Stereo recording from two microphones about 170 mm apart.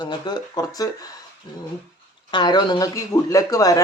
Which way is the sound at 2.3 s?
25° left (ahead or behind).